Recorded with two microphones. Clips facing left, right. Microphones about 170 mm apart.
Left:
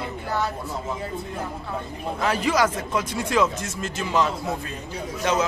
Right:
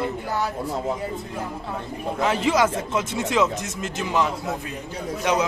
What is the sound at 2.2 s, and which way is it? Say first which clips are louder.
Speech: right 1 dB; 20° right (ahead or behind).